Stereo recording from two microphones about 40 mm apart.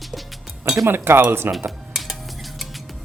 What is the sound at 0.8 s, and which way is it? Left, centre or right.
Speech, right.